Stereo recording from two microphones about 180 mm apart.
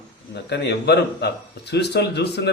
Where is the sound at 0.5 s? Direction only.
65° left (ahead or behind).